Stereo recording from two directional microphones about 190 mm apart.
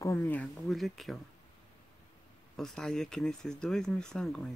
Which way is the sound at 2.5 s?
5° left (ahead or behind).